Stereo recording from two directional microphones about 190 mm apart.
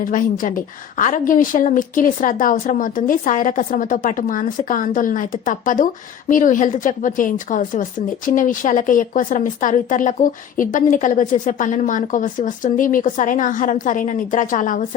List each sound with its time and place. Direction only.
0.0 s a woman's voice: 45° left (ahead or behind)